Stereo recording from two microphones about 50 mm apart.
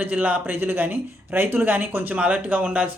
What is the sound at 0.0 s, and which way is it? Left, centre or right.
Speech, right.